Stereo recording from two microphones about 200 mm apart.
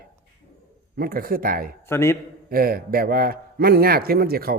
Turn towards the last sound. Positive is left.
turn(degrees=-50)  # may be behind; listen again after turning